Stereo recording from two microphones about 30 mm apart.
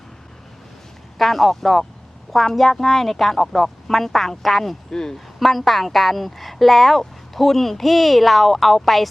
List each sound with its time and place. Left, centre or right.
1.2 s a woman's voice: centre
4.9 s speech: left
5.1 s a woman's voice: centre